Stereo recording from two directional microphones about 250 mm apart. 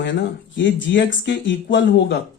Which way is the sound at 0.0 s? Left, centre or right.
Left.